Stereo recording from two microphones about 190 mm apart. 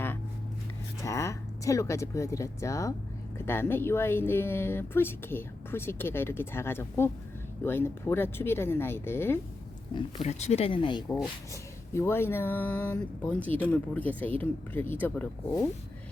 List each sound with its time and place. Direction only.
1.0 s speech: 15° left (ahead or behind)
10.2 s speech: 35° left (ahead or behind)
11.9 s speech: 10° left (ahead or behind)